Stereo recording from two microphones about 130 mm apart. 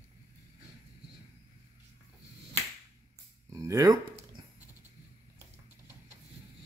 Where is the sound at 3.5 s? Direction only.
25° right (ahead or behind).